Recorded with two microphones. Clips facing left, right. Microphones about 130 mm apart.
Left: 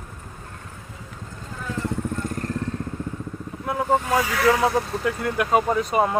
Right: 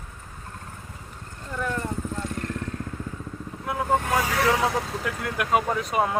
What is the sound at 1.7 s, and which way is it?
Vehicle, 90° left.